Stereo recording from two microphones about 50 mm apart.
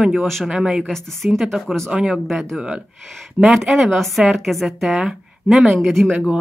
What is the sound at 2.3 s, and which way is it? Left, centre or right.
Speech, centre.